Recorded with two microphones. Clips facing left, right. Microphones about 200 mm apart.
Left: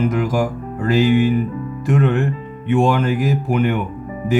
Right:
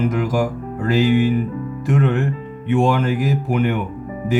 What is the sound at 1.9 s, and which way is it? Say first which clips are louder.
Speech: left 1 dB; 50° left (ahead or behind).